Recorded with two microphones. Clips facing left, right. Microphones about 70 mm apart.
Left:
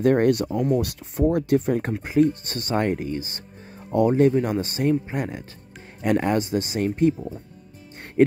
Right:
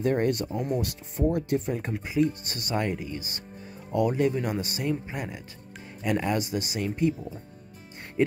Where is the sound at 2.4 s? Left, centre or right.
Left.